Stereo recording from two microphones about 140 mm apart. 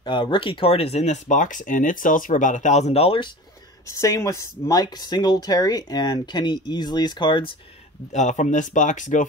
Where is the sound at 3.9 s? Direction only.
20° left (ahead or behind).